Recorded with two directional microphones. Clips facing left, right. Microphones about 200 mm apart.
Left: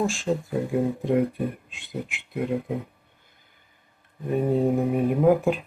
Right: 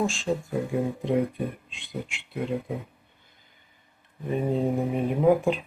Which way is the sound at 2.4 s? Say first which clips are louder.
Left 3 dB; 10° left (ahead or behind).